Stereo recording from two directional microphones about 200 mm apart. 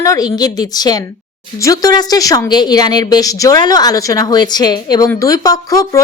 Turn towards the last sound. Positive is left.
turn(degrees=15)  # may be behind; listen again after turning